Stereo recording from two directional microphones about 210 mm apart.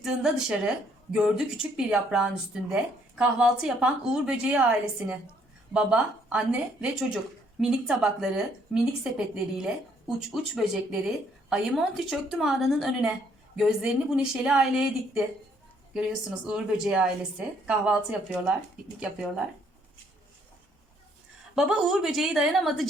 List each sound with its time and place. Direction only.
0.0 s a woman's voice: 5° right (ahead or behind)
16.5 s a woman's voice: 5° right (ahead or behind)
21.5 s a woman's voice: 5° right (ahead or behind)